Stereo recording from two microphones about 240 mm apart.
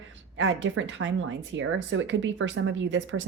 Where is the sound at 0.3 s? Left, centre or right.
Right.